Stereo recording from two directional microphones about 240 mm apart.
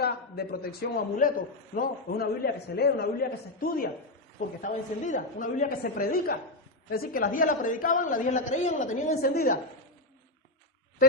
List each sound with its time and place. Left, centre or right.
0.0 s a man's voice: left